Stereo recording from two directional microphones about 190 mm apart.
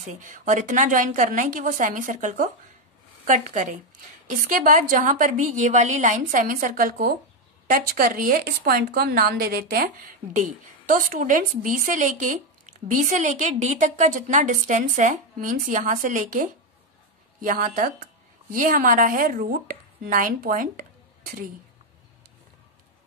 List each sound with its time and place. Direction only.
0.0 s speech: 40° right (ahead or behind)